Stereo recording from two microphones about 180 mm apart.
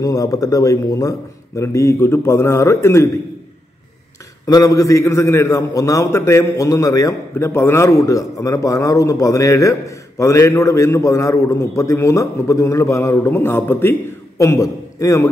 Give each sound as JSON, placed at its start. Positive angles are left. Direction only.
{"t": 0.0, "sound": "a man's voice", "side_deg": 20}
{"t": 4.5, "sound": "a man's voice", "side_deg": 20}